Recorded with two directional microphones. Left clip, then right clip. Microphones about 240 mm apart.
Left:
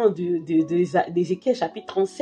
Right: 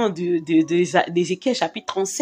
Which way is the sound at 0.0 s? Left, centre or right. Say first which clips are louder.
Even; right.